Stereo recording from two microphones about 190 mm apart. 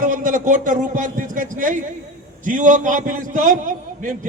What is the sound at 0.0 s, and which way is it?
A man's voice, 45° right (ahead or behind).